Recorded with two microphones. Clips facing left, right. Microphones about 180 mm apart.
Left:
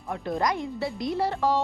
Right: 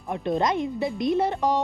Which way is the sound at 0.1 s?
20° right (ahead or behind).